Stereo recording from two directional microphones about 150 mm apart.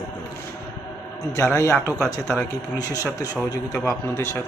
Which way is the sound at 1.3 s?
20° left (ahead or behind).